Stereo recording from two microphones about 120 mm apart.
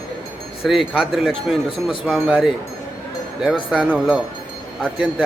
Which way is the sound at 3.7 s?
10° right (ahead or behind).